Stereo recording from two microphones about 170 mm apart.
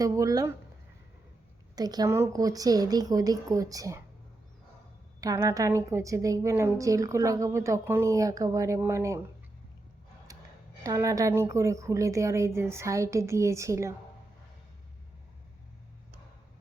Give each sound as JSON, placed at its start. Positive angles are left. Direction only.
{"t": 0.0, "sound": "a woman's voice", "side_deg": -20}
{"t": 1.7, "sound": "a woman's voice", "side_deg": -25}
{"t": 5.2, "sound": "a woman's voice", "side_deg": -15}
{"t": 10.3, "sound": "a sound", "side_deg": -20}
{"t": 10.8, "sound": "a woman's voice", "side_deg": -20}